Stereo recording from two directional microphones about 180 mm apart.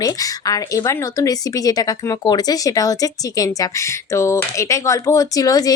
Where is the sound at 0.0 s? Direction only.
20° left (ahead or behind).